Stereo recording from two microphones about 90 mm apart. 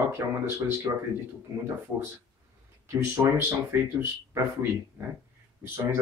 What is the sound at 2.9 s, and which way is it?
Speech, 25° right (ahead or behind).